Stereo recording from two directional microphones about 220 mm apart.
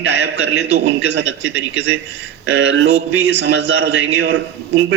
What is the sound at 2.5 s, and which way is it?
A man's voice, 60° right (ahead or behind).